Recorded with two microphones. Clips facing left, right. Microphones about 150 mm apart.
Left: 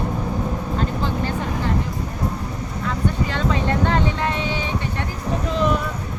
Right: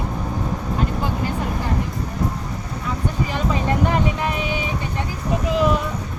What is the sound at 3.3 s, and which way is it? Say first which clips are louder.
Music: even; 10° right (ahead or behind).